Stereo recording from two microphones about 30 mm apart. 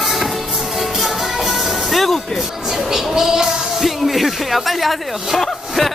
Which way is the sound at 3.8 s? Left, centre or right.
Centre.